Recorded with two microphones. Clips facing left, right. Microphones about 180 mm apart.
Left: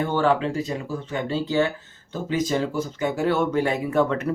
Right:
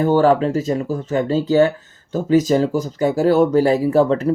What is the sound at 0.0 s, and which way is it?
Speech, 40° right (ahead or behind).